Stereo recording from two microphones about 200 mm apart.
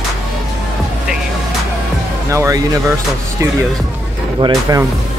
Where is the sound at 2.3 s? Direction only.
15° right (ahead or behind).